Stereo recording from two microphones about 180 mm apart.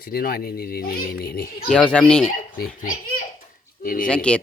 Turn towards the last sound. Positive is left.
turn(degrees=5)  # may be behind; listen again after turning